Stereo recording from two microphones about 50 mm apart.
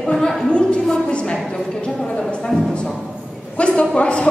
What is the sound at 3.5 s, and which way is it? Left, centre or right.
Speech, left.